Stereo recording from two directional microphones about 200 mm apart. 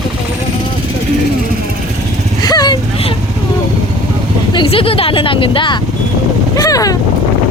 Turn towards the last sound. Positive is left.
turn(degrees=20)  # may be behind; listen again after turning